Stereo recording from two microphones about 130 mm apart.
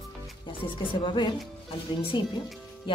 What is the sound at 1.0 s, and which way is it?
Speech, 40° left (ahead or behind).